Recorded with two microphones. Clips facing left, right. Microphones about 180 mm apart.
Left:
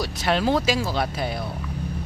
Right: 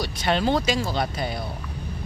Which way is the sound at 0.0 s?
Centre (ahead or behind).